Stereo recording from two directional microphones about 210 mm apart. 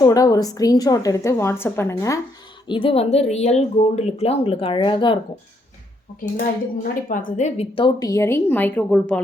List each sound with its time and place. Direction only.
0.0 s a woman's voice: 15° left (ahead or behind)
2.6 s speech: 25° left (ahead or behind)
6.8 s a woman's voice: 40° left (ahead or behind); by 9.2 s 5° left (ahead or behind)